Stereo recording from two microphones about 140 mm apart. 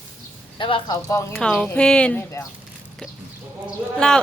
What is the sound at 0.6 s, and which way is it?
Speech, 35° left (ahead or behind).